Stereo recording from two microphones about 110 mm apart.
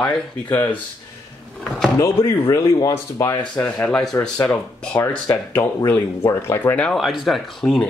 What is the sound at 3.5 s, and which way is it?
Speech, 15° left (ahead or behind).